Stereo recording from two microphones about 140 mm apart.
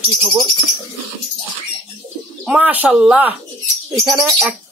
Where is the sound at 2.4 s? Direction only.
10° right (ahead or behind).